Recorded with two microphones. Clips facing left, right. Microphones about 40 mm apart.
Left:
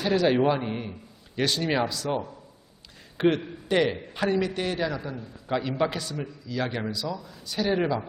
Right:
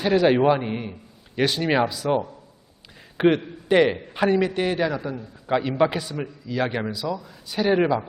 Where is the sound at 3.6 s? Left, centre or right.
Centre.